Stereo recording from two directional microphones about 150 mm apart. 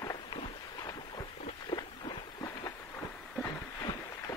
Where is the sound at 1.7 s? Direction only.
30° left (ahead or behind).